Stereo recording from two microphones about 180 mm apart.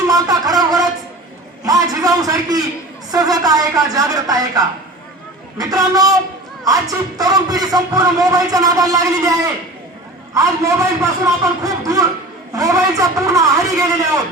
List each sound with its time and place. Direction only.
0.1 s speech: 20° right (ahead or behind)
10.3 s a man's voice: 15° right (ahead or behind)